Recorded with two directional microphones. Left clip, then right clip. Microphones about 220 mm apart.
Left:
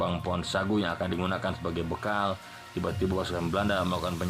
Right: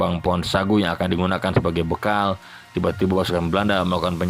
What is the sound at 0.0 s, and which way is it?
Speech, 25° right (ahead or behind).